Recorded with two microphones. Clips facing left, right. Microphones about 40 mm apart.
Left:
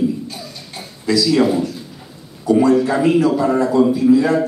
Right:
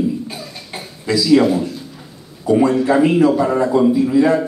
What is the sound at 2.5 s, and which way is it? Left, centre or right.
Speech, right.